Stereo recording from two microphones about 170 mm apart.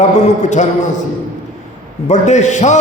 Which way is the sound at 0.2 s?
45° left (ahead or behind).